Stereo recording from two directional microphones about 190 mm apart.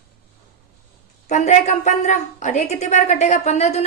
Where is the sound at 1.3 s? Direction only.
40° left (ahead or behind).